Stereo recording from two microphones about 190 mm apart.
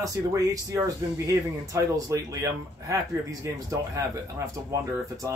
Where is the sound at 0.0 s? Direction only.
15° right (ahead or behind).